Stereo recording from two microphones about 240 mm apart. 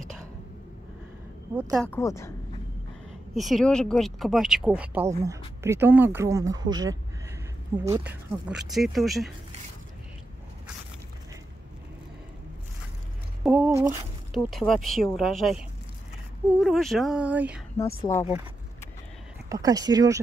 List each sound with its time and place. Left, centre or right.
1.5 s speech: centre
1.8 s speech: centre
3.3 s speech: centre
13.4 s squish: centre
14.3 s speech: centre
16.6 s speech: centre
19.5 s speech: centre